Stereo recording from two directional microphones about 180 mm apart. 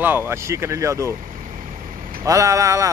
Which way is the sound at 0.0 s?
10° right (ahead or behind).